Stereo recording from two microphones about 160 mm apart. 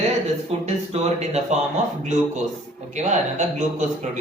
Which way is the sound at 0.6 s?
45° right (ahead or behind).